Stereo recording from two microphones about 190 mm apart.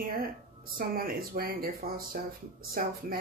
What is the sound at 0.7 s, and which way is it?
Speech, 50° right (ahead or behind).